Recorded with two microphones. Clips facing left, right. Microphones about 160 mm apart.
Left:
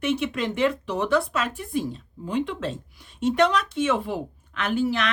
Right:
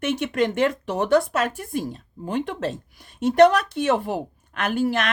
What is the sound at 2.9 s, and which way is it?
Speech, 45° right (ahead or behind).